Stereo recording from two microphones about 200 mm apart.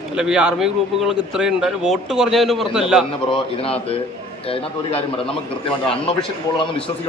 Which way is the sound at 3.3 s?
30° left (ahead or behind).